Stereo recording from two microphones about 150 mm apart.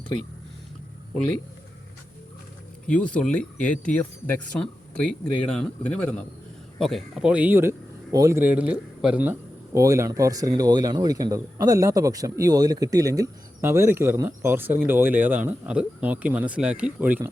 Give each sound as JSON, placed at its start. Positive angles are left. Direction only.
{"t": 2.8, "sound": "speech", "side_deg": 5}